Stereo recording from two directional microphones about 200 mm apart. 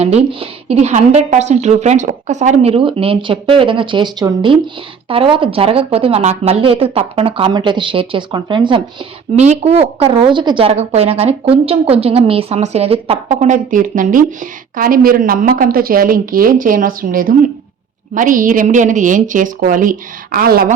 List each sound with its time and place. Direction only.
0.0 s a woman's voice: 30° right (ahead or behind); by 20.7 s 45° right (ahead or behind)